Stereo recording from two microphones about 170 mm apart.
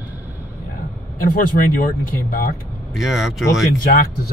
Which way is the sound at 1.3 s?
60° left (ahead or behind).